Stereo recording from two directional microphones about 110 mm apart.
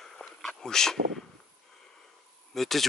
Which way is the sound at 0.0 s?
5° left (ahead or behind).